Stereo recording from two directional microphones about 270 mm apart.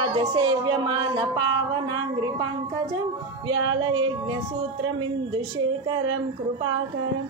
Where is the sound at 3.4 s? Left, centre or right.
Centre.